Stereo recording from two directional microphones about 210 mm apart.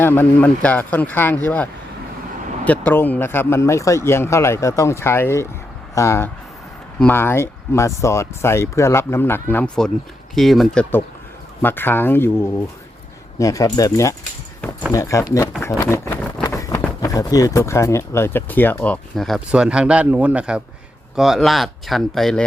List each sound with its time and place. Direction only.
0.0 s speech: 10° left (ahead or behind)
15.8 s a sound: 15° left (ahead or behind)
17.0 s speech: 15° left (ahead or behind)